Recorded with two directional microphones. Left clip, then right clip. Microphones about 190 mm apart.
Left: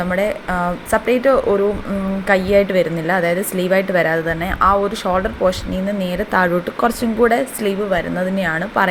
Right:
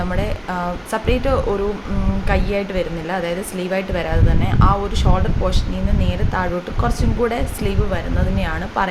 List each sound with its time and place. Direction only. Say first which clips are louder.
0.1 s speech: left 5 dB; 15° left (ahead or behind)